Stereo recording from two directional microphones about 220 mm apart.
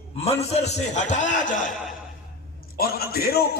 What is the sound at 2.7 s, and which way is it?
Speech, 45° left (ahead or behind).